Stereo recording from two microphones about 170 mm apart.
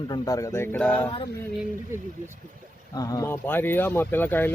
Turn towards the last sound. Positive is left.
turn(degrees=10)  # may be behind; listen again after turning